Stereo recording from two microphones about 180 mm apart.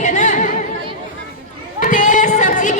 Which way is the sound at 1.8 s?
45° left (ahead or behind).